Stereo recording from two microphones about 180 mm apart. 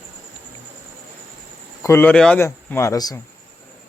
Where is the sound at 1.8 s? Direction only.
10° left (ahead or behind).